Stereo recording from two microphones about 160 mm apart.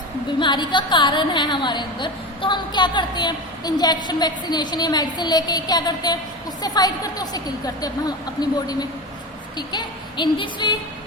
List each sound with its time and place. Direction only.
0.3 s a woman's voice: 30° left (ahead or behind)